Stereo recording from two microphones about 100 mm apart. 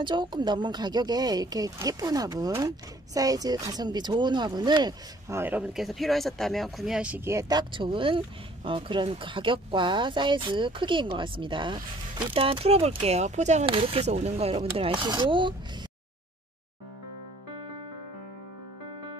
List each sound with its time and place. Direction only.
0.0 s speech: 55° right (ahead or behind)
5.3 s speech: 20° right (ahead or behind)
5.6 s speech: 5° right (ahead or behind)
7.2 s speech: 25° right (ahead or behind)
7.4 s speech: 50° right (ahead or behind)
12.4 s speech: 85° right
13.7 s speech: 70° right (ahead or behind)
14.9 s speech: 50° right (ahead or behind)